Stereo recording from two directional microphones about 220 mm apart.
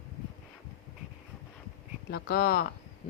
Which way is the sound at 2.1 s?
40° left (ahead or behind).